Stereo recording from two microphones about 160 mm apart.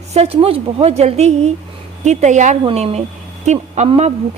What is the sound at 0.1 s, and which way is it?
A woman's voice, 40° right (ahead or behind).